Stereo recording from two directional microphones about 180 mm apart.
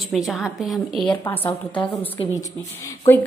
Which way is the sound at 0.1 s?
Centre (ahead or behind).